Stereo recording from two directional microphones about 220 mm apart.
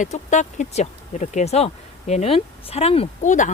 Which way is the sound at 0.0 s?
35° left (ahead or behind).